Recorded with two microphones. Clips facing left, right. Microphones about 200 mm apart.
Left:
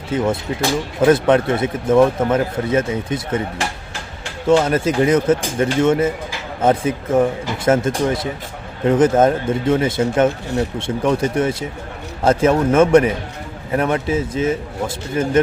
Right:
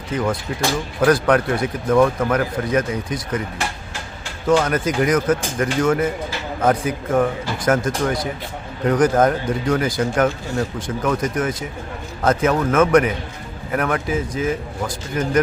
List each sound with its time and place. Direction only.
0.1 s speech: 25° left (ahead or behind)
4.6 s speech: 25° left (ahead or behind)